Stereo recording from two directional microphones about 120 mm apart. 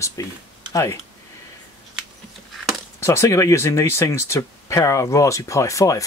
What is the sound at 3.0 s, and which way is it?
Speech, 25° left (ahead or behind).